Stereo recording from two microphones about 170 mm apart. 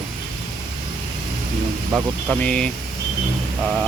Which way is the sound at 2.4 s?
5° left (ahead or behind).